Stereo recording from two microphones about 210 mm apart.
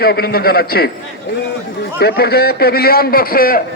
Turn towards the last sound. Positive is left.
turn(degrees=45)  # may be behind; listen again after turning